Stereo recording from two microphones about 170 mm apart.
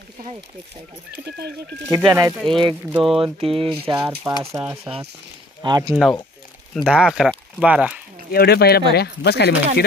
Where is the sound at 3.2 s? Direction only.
35° right (ahead or behind).